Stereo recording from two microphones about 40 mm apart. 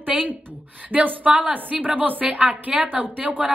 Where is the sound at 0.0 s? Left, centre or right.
Right.